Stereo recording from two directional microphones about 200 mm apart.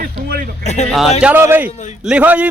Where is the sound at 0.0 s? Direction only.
45° right (ahead or behind).